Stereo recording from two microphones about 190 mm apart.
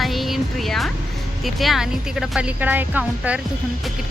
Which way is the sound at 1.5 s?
Centre (ahead or behind).